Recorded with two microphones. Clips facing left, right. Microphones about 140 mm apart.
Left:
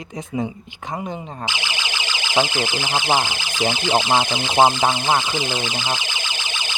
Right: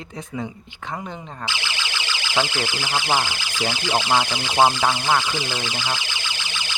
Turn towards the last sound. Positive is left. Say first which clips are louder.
# left 2 dB
turn(degrees=20)  # may be behind; listen again after turning